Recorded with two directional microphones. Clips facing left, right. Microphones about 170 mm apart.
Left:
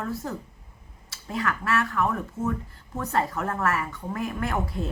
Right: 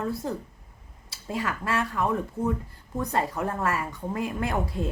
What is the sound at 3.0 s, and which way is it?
Speech, 15° right (ahead or behind).